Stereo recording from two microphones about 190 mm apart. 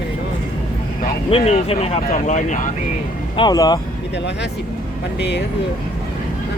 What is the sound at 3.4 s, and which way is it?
Speech, 20° left (ahead or behind).